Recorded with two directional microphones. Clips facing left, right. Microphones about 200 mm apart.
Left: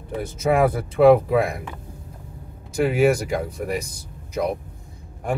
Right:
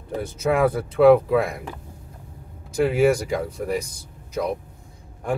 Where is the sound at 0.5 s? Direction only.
10° left (ahead or behind).